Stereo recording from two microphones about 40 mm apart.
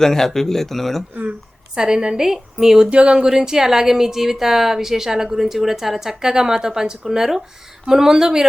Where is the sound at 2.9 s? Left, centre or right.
Right.